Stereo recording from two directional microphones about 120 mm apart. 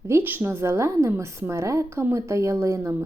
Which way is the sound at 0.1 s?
15° right (ahead or behind).